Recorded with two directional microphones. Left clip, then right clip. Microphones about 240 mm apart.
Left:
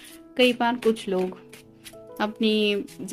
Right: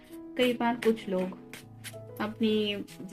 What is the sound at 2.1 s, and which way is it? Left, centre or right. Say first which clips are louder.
Speech: left 6 dB; left.